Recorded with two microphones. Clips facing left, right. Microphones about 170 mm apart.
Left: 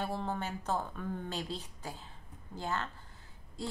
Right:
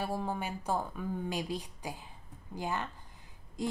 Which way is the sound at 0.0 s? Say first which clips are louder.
Right 1 dB; 10° right (ahead or behind).